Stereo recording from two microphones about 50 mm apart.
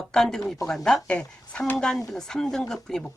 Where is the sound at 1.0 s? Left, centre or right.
Left.